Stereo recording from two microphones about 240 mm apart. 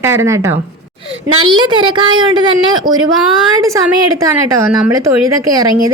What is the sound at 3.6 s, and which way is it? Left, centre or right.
Speech, centre.